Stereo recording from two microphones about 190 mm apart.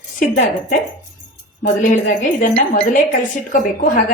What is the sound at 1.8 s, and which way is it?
A woman's voice, 45° left (ahead or behind).